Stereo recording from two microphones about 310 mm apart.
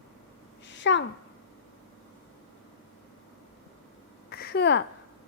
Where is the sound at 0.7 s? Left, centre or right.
Left.